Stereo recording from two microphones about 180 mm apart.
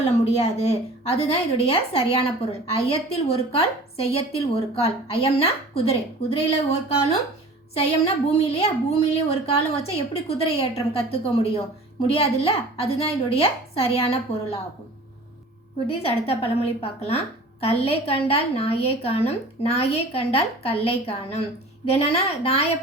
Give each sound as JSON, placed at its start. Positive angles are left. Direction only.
{"t": 0.0, "sound": "a woman's voice", "side_deg": 35}
{"t": 8.0, "sound": "a woman's voice", "side_deg": 35}
{"t": 15.9, "sound": "a woman's voice", "side_deg": 30}